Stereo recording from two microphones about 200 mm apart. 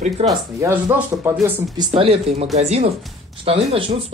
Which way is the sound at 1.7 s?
25° right (ahead or behind).